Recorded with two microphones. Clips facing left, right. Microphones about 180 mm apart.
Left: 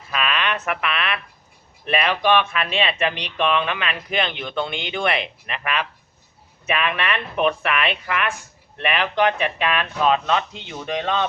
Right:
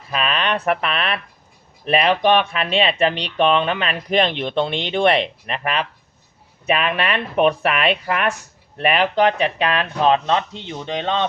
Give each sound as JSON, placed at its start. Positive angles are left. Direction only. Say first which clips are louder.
{"t": 0.1, "sound": "speech", "louder": "right 3 dB", "side_deg": -35}